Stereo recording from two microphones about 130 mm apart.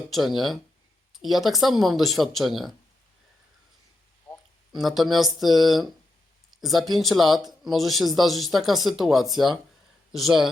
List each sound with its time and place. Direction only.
0.1 s speech: centre (ahead or behind)
4.3 s a sound: 15° left (ahead or behind)
4.7 s speech: centre (ahead or behind)